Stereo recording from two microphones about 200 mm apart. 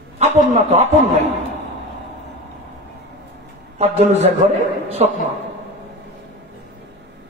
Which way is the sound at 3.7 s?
35° right (ahead or behind).